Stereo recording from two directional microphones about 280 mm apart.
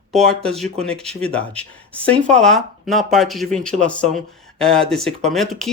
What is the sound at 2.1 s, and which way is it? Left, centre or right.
Speech, centre.